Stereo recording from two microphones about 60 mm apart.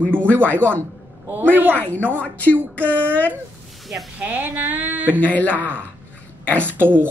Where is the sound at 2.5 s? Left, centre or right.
Right.